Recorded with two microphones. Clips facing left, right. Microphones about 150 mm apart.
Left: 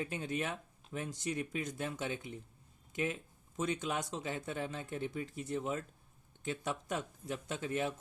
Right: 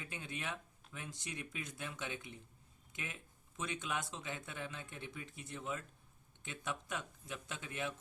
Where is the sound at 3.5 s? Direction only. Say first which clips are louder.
Left 6 dB; 40° left (ahead or behind).